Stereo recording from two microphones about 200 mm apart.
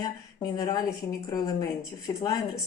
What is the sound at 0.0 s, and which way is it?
A woman's voice, 20° left (ahead or behind).